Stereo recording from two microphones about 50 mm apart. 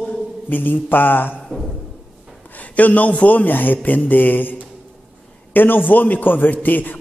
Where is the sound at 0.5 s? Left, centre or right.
Left.